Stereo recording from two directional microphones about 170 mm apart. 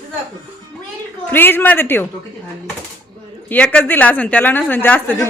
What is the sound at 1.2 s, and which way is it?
Speech, 10° left (ahead or behind).